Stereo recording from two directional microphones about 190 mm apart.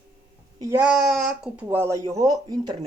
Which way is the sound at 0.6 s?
15° right (ahead or behind).